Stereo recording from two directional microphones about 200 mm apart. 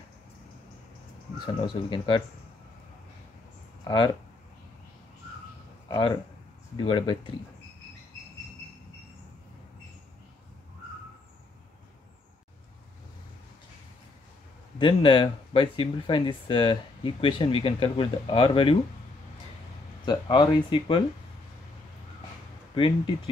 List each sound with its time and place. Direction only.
1.4 s speech: 25° left (ahead or behind)
3.8 s speech: 20° left (ahead or behind)
5.9 s speech: 25° left (ahead or behind)
14.8 s speech: 25° left (ahead or behind)
20.1 s speech: 25° left (ahead or behind)
22.8 s speech: 25° left (ahead or behind)